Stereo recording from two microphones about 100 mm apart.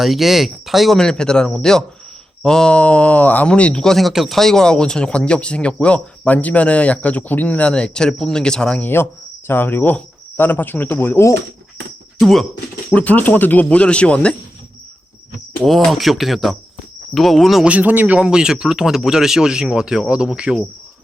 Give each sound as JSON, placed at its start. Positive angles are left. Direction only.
{"t": 0.0, "sound": "speech", "side_deg": 0}
{"t": 9.5, "sound": "cricket", "side_deg": 20}
{"t": 12.2, "sound": "speech", "side_deg": 0}
{"t": 12.9, "sound": "speech", "side_deg": 15}
{"t": 15.6, "sound": "speech", "side_deg": 0}
{"t": 17.7, "sound": "speech", "side_deg": -15}